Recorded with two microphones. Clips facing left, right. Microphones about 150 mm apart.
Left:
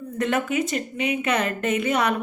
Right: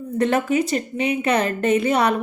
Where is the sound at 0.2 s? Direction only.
35° right (ahead or behind).